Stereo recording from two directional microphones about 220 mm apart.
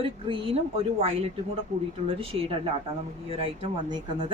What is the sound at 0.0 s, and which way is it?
Speech, 25° right (ahead or behind).